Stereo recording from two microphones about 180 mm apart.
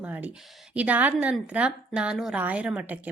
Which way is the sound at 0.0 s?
10° right (ahead or behind).